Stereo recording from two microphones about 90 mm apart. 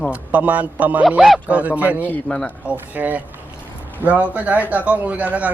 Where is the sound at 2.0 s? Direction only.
20° left (ahead or behind).